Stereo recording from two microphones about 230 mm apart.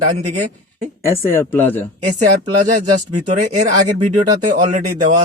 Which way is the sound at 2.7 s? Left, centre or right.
Right.